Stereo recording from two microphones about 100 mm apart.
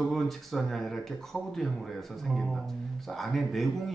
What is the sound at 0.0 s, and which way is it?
Speech, centre (ahead or behind).